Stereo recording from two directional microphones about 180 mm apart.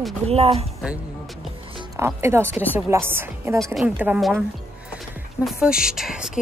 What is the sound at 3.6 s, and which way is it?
Speech, centre (ahead or behind).